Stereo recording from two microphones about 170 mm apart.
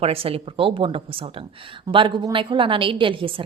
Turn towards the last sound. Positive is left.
turn(degrees=-30)  # may be behind; listen again after turning